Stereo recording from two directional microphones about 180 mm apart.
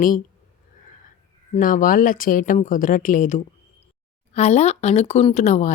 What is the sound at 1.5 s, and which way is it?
A woman's voice, 50° left (ahead or behind).